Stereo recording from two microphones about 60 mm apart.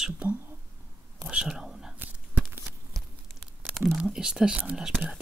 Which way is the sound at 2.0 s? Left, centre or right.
Right.